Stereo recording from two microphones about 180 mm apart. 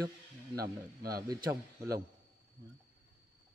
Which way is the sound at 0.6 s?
20° right (ahead or behind).